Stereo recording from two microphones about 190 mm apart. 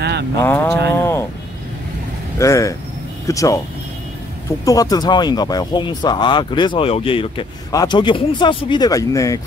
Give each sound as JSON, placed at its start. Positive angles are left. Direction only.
{"t": 0.4, "sound": "speech", "side_deg": 10}
{"t": 0.9, "sound": "vehicle", "side_deg": 15}
{"t": 2.3, "sound": "speech", "side_deg": 15}
{"t": 4.6, "sound": "speech", "side_deg": 20}